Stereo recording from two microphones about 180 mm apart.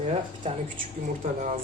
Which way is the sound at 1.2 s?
45° right (ahead or behind).